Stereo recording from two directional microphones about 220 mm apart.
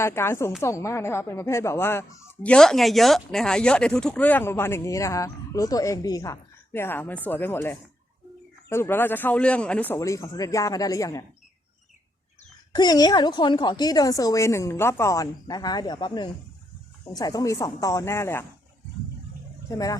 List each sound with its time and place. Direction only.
0.0 s speech: 10° left (ahead or behind)
12.7 s speech: 20° left (ahead or behind)
19.7 s speech: 15° left (ahead or behind)